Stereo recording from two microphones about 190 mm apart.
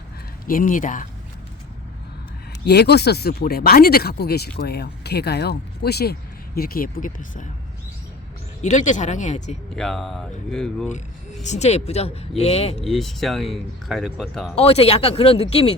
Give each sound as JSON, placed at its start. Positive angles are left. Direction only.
{"t": 0.4, "sound": "speech", "side_deg": 45}
{"t": 2.6, "sound": "speech", "side_deg": 60}
{"t": 8.6, "sound": "speech", "side_deg": 40}
{"t": 9.7, "sound": "speech", "side_deg": 0}
{"t": 11.4, "sound": "speech", "side_deg": 35}
{"t": 12.8, "sound": "speech", "side_deg": 0}
{"t": 14.5, "sound": "speech", "side_deg": 30}